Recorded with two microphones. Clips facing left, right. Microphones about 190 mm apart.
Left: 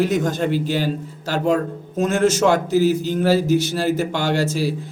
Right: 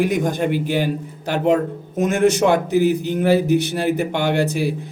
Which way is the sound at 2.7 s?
60° right (ahead or behind).